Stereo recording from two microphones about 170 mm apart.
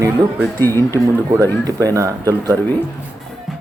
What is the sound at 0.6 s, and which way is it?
Speech, 15° left (ahead or behind).